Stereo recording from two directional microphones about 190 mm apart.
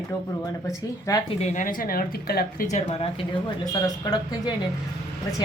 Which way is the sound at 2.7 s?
30° left (ahead or behind).